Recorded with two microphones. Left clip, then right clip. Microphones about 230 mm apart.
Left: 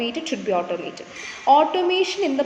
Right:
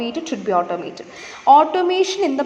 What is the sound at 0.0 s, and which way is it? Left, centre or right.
A woman's voice, centre.